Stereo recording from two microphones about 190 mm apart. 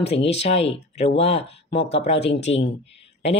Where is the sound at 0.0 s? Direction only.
30° left (ahead or behind).